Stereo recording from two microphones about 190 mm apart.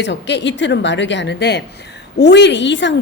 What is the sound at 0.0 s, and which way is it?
A woman's voice, 65° left (ahead or behind).